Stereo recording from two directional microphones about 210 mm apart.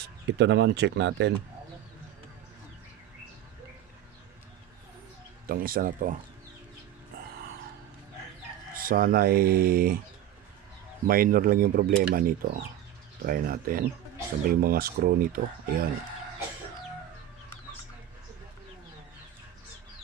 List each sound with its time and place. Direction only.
0.3 s speech: 55° right (ahead or behind)
5.5 s speech: 45° right (ahead or behind)
8.7 s speech: 45° right (ahead or behind)
11.0 s speech: 45° right (ahead or behind)